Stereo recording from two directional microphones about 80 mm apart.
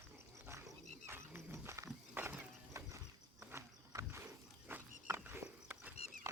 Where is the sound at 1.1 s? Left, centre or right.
Right.